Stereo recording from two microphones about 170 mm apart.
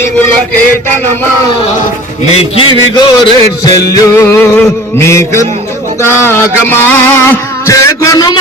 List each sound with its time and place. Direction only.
2.3 s music: 35° left (ahead or behind)